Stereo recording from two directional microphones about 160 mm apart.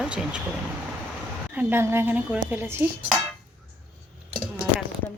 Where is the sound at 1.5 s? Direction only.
15° right (ahead or behind).